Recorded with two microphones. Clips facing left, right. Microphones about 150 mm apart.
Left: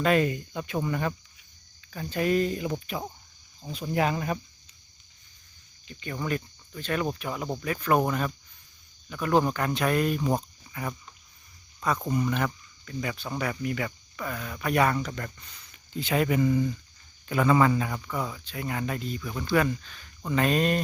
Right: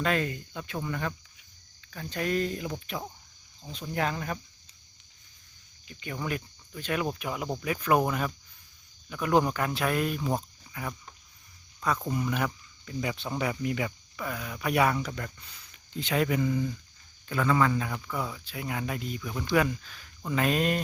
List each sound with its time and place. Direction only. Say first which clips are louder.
0.0 s speech: left 5 dB; 10° left (ahead or behind)
5.9 s speech: left 3 dB; 5° right (ahead or behind)
12.0 s speech: left 2 dB; centre (ahead or behind); by 13.9 s 20° right (ahead or behind)
14.2 s speech: left 1 dB; 5° right (ahead or behind)
17.2 s speech: left 3 dB; 15° left (ahead or behind)
17.8 s speech: left 2 dB; centre (ahead or behind)